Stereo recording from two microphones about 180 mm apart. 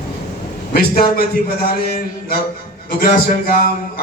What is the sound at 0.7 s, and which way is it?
A man's voice, 55° left (ahead or behind).